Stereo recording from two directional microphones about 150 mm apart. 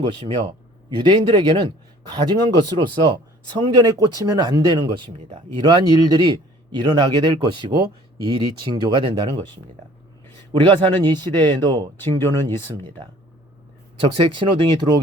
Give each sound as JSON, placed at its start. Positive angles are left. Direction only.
{"t": 0.9, "sound": "speech", "side_deg": -30}
{"t": 10.6, "sound": "speech", "side_deg": -30}
{"t": 11.9, "sound": "speech", "side_deg": 15}
{"t": 14.0, "sound": "speech", "side_deg": -35}